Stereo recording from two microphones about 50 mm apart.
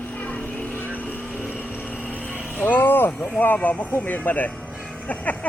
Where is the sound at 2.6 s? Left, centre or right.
Left.